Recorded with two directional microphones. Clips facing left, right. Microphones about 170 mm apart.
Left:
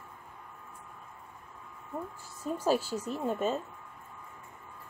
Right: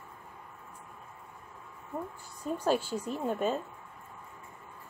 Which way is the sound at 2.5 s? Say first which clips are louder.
Even; 5° left (ahead or behind).